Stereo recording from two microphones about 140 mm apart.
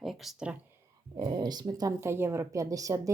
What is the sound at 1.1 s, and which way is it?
Speech, 30° right (ahead or behind).